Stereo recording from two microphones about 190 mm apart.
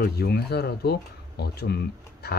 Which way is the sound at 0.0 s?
60° left (ahead or behind).